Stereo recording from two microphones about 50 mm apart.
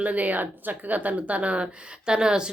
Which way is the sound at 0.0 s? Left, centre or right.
Right.